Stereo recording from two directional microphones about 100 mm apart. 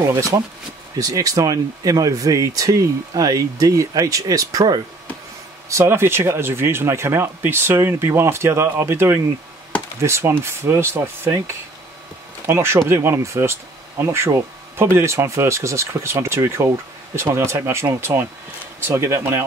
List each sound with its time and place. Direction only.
0.0 s speech: 35° right (ahead or behind)
5.7 s speech: 25° right (ahead or behind)